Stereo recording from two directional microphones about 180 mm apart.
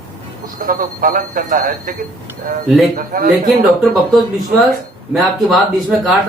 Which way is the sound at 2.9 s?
50° right (ahead or behind).